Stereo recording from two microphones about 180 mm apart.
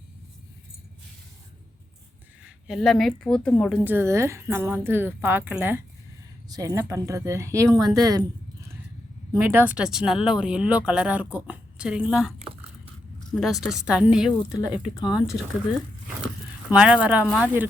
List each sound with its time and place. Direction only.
2.4 s speech: centre (ahead or behind)
3.8 s a woman's voice: 15° right (ahead or behind)
9.5 s speech: 10° right (ahead or behind)
12.4 s squish: 30° right (ahead or behind)
13.3 s speech: centre (ahead or behind)
16.7 s a woman's voice: 5° right (ahead or behind)